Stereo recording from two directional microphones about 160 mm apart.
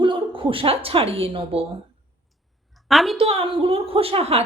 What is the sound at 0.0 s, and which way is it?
A woman's voice, 30° right (ahead or behind).